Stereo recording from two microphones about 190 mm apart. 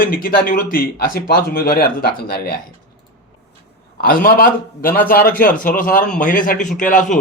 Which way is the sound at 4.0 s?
50° left (ahead or behind).